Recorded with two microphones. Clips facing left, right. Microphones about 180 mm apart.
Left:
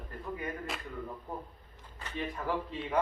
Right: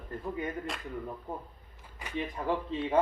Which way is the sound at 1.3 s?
20° right (ahead or behind).